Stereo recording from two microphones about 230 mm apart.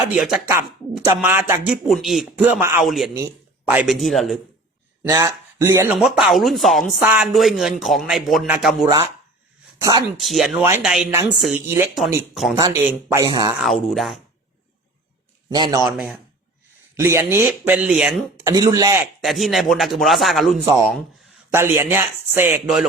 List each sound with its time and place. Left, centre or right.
0.1 s speech: centre
5.0 s speech: centre
10.2 s speech: centre
13.1 s speech: centre
13.6 s speech: centre
15.4 s a man's voice: centre
15.9 s speech: centre
18.4 s speech: centre
19.2 s speech: centre
21.5 s speech: centre